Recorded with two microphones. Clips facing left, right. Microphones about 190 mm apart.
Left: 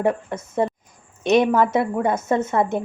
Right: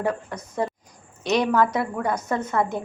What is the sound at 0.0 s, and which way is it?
A woman's voice, 25° left (ahead or behind).